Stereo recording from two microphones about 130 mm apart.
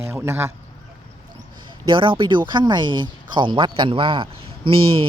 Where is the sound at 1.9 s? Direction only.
40° right (ahead or behind).